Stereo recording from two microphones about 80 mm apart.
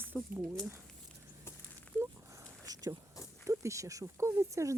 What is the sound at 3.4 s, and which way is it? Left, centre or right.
Speech, right.